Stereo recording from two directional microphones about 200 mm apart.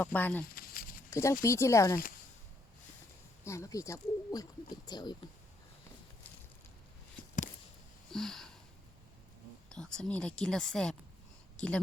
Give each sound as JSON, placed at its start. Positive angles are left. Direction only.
{"t": 0.0, "sound": "speech", "side_deg": 10}
{"t": 0.5, "sound": "a sound", "side_deg": 45}
{"t": 1.1, "sound": "speech", "side_deg": 15}
{"t": 3.4, "sound": "speech", "side_deg": 15}
{"t": 7.2, "sound": "a sound", "side_deg": 5}
{"t": 9.6, "sound": "speech", "side_deg": 5}